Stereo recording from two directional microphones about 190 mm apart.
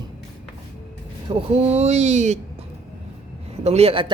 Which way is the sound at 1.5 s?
35° right (ahead or behind).